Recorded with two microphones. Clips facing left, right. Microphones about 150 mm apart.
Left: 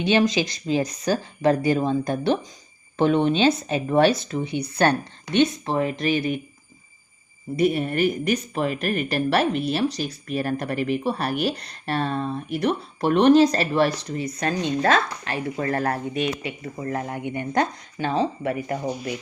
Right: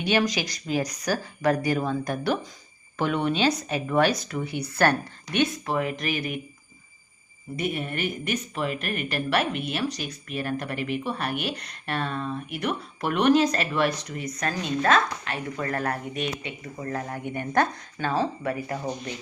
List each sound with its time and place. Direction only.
0.0 s speech: 25° left (ahead or behind)
7.5 s speech: 35° left (ahead or behind)